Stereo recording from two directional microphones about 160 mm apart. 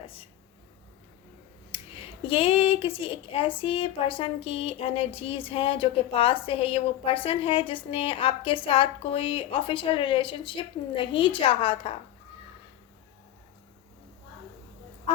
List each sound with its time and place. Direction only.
1.7 s speech: 35° left (ahead or behind)